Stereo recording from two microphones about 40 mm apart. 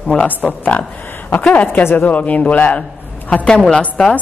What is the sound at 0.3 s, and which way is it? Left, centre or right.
Speech, left.